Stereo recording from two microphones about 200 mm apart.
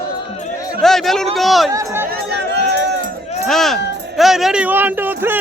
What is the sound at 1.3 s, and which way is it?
Speech, centre (ahead or behind).